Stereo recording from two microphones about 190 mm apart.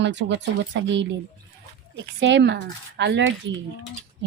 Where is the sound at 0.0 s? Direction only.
65° right (ahead or behind).